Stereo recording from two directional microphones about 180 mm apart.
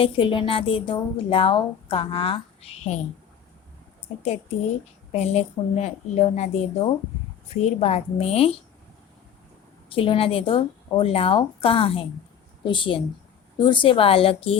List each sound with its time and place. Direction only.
0.0 s speech: 30° left (ahead or behind)
5.1 s speech: 35° left (ahead or behind)
9.9 s a woman's voice: 30° left (ahead or behind)